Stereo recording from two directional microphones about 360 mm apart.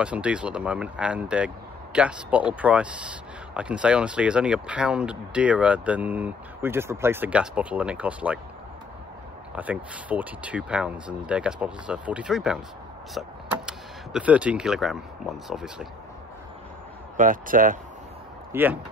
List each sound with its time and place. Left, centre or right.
0.0 s speech: centre
9.6 s speech: centre
13.7 s speech: centre
17.2 s speech: right
18.5 s speech: centre